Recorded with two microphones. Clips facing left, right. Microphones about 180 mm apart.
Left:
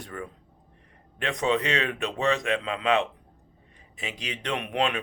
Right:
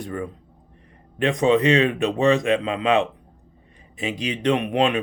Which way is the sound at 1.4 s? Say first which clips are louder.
Right 8 dB; 20° right (ahead or behind).